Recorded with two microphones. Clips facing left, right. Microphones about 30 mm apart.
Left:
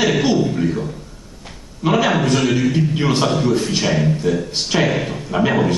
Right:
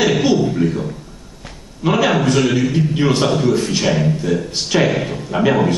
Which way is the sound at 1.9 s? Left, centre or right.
Centre.